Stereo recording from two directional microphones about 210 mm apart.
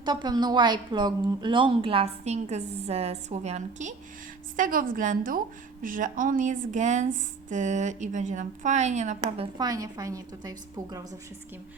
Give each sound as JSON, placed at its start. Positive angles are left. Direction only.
{"t": 0.0, "sound": "a woman's voice", "side_deg": -20}
{"t": 9.6, "sound": "a woman's voice", "side_deg": -15}